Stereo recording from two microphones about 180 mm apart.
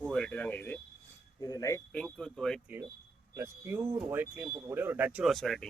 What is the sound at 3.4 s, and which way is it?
Speech, 15° right (ahead or behind).